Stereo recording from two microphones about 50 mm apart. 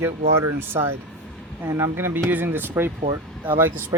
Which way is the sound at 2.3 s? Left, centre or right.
Right.